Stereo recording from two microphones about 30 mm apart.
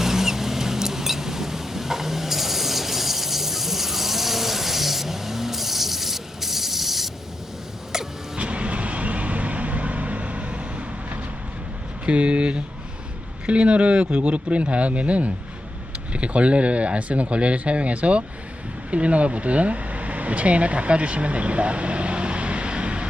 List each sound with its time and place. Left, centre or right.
0.0 s vehicle: centre
8.4 s vehicle: right
12.0 s a sound: right
13.5 s speech: right